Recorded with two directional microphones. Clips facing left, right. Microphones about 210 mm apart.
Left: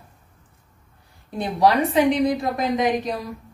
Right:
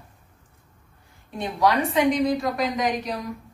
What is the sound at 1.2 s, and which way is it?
Speech, 35° left (ahead or behind).